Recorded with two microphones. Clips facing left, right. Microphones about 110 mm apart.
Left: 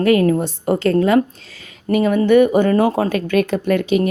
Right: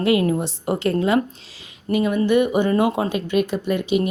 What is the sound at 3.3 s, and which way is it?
Speech, 5° right (ahead or behind).